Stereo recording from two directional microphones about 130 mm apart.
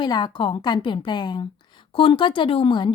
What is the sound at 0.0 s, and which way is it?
A woman's voice, 35° left (ahead or behind).